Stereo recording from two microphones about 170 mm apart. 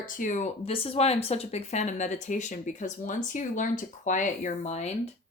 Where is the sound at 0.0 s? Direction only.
50° left (ahead or behind).